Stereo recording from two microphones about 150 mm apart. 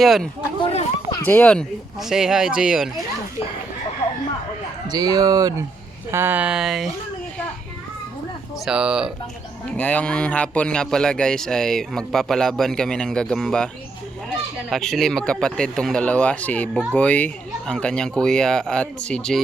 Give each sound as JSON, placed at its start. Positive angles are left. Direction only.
{"t": 0.0, "sound": "speech", "side_deg": 0}
{"t": 0.6, "sound": "a sound", "side_deg": 45}
{"t": 1.2, "sound": "speech", "side_deg": 10}
{"t": 4.9, "sound": "speech", "side_deg": -25}
{"t": 8.6, "sound": "speech", "side_deg": -5}
{"t": 9.7, "sound": "speech", "side_deg": 10}
{"t": 14.7, "sound": "speech", "side_deg": 0}